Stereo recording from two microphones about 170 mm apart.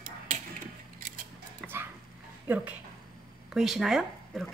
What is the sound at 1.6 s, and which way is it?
Dog, centre (ahead or behind).